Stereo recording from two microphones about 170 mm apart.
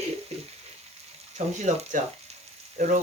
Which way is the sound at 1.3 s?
40° right (ahead or behind).